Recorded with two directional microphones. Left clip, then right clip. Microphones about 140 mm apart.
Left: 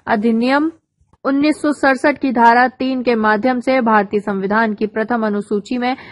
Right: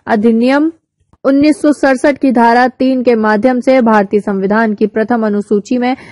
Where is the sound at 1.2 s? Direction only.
55° right (ahead or behind).